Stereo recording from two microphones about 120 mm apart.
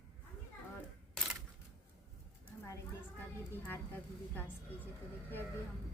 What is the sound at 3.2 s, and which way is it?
A woman's voice, 15° left (ahead or behind).